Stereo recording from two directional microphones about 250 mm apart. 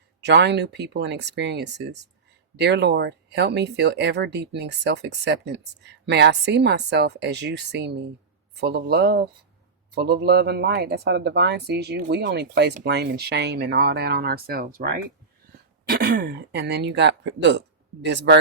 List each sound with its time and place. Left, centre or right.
0.2 s speech: right